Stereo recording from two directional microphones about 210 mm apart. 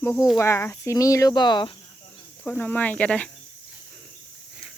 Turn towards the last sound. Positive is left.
turn(degrees=5)  # may be behind; listen again after turning